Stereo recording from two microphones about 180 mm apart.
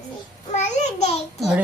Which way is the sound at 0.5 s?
40° left (ahead or behind).